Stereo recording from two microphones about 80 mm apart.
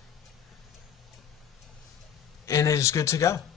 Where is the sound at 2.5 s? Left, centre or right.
Left.